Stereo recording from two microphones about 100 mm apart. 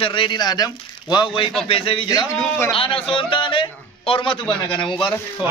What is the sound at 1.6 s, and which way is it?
A man's voice, 70° left (ahead or behind).